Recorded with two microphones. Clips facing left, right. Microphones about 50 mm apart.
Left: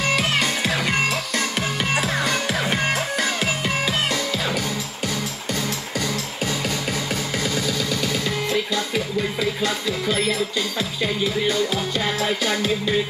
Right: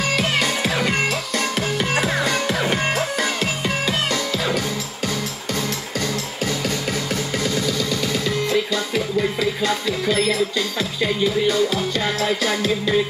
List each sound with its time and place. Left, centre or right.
0.1 s music: centre
5.9 s music: centre